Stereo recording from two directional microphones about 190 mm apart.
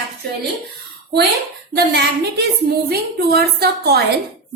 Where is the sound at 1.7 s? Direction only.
60° right (ahead or behind).